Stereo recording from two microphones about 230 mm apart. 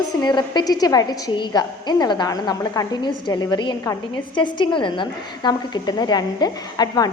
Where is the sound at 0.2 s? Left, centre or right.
Centre.